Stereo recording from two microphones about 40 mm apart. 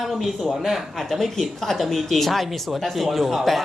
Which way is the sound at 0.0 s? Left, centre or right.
Centre.